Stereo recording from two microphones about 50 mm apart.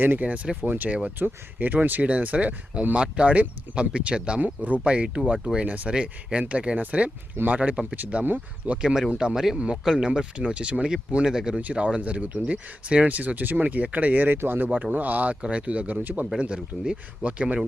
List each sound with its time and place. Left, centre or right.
0.2 s speech: right
1.2 s speech: right
2.9 s speech: right
4.4 s speech: right
5.9 s speech: right
8.8 s speech: centre
11.6 s speech: right
16.4 s speech: centre